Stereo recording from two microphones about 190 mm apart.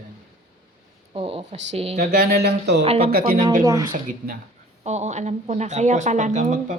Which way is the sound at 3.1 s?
50° right (ahead or behind).